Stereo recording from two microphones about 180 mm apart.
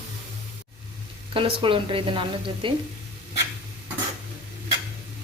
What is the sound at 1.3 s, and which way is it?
Speech, 30° right (ahead or behind).